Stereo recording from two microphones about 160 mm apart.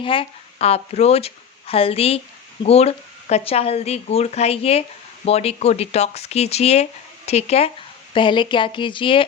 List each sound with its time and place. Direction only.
0.0 s speech: 35° left (ahead or behind)